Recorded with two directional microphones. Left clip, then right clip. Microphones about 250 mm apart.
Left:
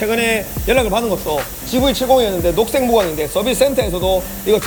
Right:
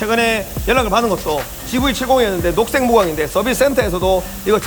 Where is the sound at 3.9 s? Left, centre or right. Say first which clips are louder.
Right 1 dB; right.